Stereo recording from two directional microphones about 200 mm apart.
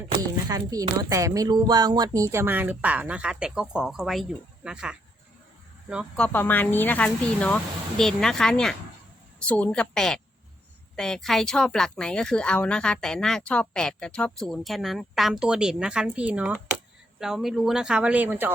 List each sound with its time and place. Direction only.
0.1 s speech: 15° right (ahead or behind)
6.2 s speech: 10° left (ahead or behind); by 18.5 s 10° right (ahead or behind)